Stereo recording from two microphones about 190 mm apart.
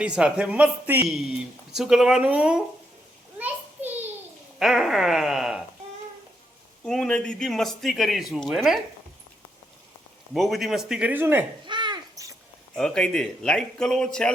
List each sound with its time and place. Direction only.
0.0 s speech: 5° right (ahead or behind)
3.3 s a sound: 10° right (ahead or behind)
4.6 s speech: centre (ahead or behind)
6.8 s speech: 5° left (ahead or behind)
10.3 s speech: centre (ahead or behind)
11.6 s a sound: 25° right (ahead or behind)
12.7 s speech: 5° left (ahead or behind)